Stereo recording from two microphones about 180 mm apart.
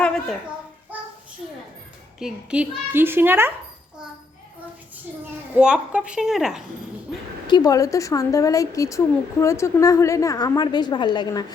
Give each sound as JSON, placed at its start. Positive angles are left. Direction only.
{"t": 2.1, "sound": "a child's voice", "side_deg": -5}
{"t": 5.5, "sound": "a woman's voice", "side_deg": -5}
{"t": 7.4, "sound": "speech", "side_deg": 20}